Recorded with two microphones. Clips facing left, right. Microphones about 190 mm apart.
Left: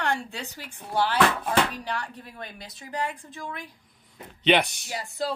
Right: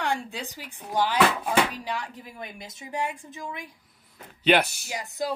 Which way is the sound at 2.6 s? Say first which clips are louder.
Even; 20° right (ahead or behind).